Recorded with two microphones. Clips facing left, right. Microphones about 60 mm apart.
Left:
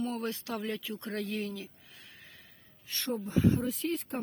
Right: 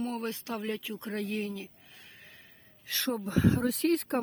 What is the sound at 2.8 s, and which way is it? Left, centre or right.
Speech, right.